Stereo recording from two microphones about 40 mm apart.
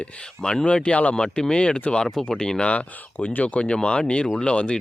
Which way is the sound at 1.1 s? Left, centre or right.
Centre.